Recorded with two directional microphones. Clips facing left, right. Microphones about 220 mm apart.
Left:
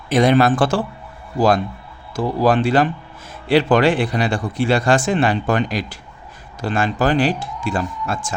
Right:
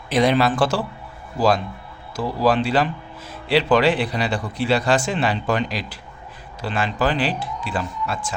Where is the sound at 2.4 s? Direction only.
50° left (ahead or behind).